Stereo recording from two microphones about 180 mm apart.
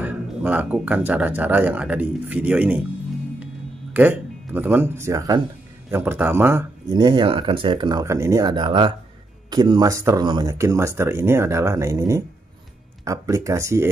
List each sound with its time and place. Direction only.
0.0 s speech: 10° right (ahead or behind)
3.9 s speech: 10° right (ahead or behind)
6.9 s speech: 25° right (ahead or behind)